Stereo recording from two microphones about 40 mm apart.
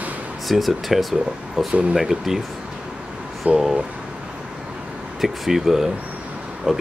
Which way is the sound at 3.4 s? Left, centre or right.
Right.